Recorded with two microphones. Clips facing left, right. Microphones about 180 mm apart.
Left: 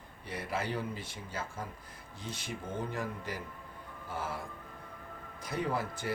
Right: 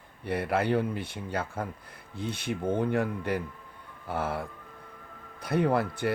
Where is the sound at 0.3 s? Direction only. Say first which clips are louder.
Right 9 dB; 60° right (ahead or behind).